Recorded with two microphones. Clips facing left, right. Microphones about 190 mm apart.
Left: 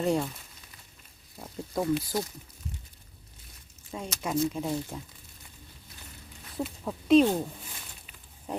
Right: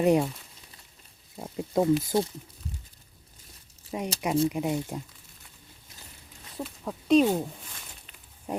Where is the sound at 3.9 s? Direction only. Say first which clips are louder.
Right 4 dB; 15° right (ahead or behind).